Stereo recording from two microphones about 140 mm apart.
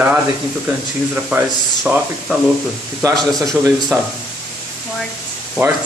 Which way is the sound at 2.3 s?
10° right (ahead or behind).